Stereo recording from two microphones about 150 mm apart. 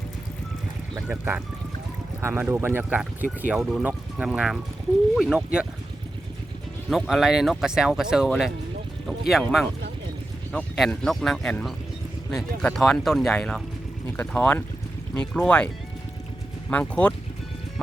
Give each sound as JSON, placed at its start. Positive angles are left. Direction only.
{"t": 1.0, "sound": "speech", "side_deg": -10}
{"t": 6.9, "sound": "speech", "side_deg": 0}
{"t": 10.5, "sound": "speech", "side_deg": 5}